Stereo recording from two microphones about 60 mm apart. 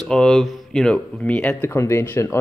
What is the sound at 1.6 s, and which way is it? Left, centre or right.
Speech, left.